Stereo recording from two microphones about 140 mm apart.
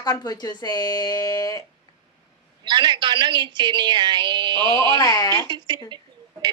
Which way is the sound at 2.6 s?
35° right (ahead or behind).